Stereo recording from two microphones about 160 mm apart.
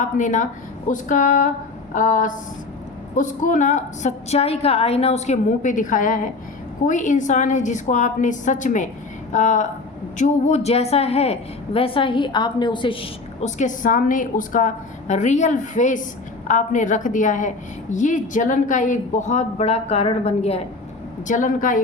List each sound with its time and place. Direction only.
0.0 s a woman's voice: 50° left (ahead or behind); by 13.5 s 35° left (ahead or behind)
13.6 s a woman's voice: 55° left (ahead or behind)
21.2 s speech: 55° left (ahead or behind)